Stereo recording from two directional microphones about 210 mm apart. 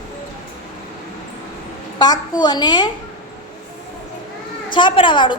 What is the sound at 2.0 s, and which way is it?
Speech, 20° left (ahead or behind).